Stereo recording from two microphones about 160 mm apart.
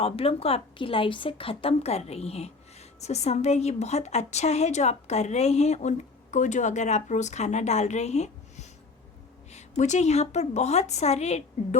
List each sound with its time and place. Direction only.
0.0 s a woman's voice: 35° left (ahead or behind)